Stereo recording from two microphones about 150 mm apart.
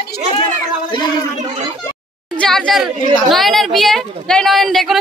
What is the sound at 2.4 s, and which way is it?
Speech, 5° left (ahead or behind).